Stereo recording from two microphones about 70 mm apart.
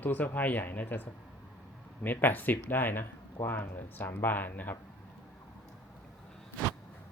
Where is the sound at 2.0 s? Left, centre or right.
Left.